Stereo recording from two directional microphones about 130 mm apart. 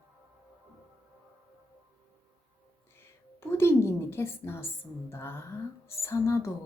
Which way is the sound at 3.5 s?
20° left (ahead or behind).